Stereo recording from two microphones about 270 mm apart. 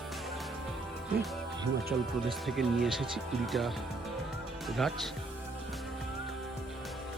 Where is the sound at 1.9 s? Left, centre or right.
Centre.